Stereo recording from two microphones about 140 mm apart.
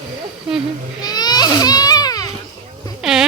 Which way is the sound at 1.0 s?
30° left (ahead or behind).